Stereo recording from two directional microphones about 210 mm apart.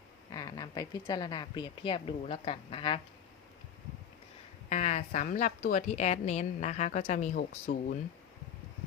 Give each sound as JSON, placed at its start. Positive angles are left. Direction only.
{"t": 0.3, "sound": "a woman's voice", "side_deg": 20}
{"t": 4.7, "sound": "a woman's voice", "side_deg": 30}